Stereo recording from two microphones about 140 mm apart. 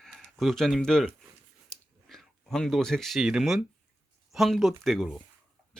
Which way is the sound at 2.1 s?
5° left (ahead or behind).